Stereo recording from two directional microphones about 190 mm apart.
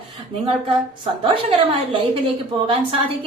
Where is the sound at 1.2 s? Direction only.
30° right (ahead or behind).